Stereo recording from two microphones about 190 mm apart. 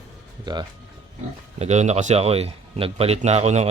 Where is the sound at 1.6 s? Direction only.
35° right (ahead or behind).